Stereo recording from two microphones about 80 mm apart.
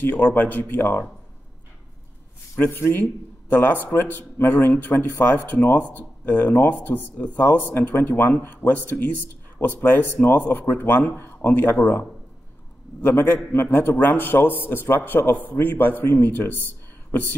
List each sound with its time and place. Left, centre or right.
0.0 s speech: left
2.6 s speech: left